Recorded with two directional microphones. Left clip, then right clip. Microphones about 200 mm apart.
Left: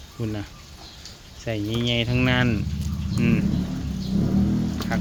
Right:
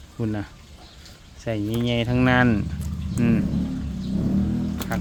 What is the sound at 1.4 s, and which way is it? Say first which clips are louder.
Speech: even; 25° right (ahead or behind).